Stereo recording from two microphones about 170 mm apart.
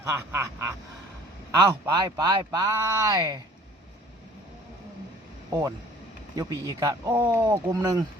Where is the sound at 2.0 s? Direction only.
25° right (ahead or behind).